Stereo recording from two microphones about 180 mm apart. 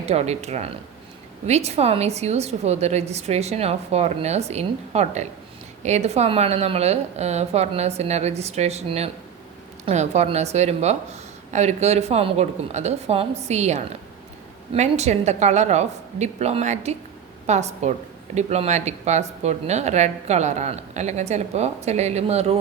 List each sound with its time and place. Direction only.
0.0 s speech: 35° right (ahead or behind)